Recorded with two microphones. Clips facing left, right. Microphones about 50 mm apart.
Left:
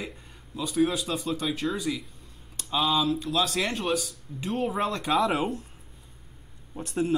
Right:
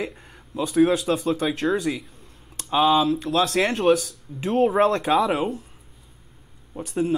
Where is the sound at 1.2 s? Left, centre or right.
Right.